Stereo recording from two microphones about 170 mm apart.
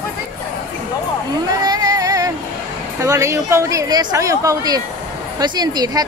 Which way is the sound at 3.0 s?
20° right (ahead or behind).